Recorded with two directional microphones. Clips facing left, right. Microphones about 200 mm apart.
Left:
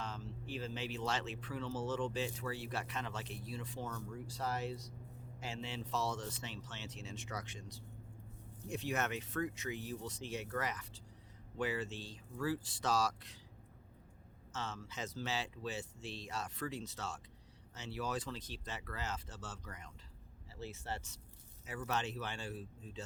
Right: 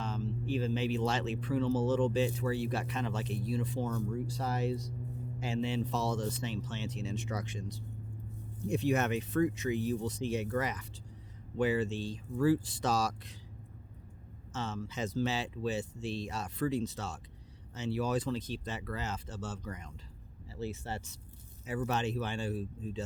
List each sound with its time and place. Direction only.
0.0 s speech: 20° right (ahead or behind)
14.5 s speech: 20° right (ahead or behind)